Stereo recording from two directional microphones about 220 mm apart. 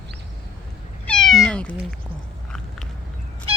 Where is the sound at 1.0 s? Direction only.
5° left (ahead or behind).